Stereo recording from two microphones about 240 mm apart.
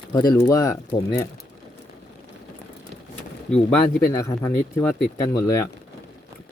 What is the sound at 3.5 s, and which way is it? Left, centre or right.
Speech, centre.